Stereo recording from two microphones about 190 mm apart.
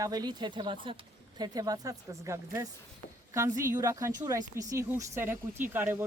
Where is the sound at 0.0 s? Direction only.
20° right (ahead or behind).